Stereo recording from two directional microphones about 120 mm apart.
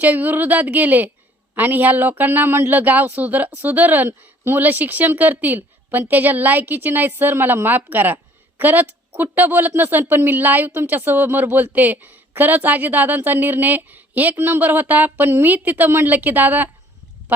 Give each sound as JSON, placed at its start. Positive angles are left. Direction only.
{"t": 0.0, "sound": "speech", "side_deg": -15}